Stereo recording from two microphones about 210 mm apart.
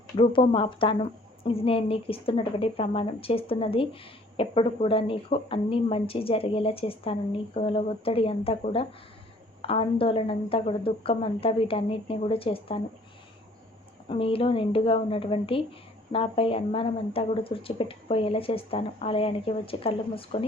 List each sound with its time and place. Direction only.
0.2 s speech: 25° left (ahead or behind)
14.1 s speech: 25° left (ahead or behind)